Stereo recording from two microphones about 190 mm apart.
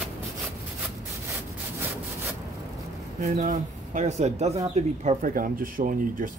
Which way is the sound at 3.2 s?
40° right (ahead or behind).